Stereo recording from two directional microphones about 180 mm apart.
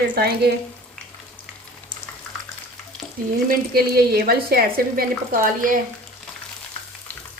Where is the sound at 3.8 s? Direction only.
55° right (ahead or behind).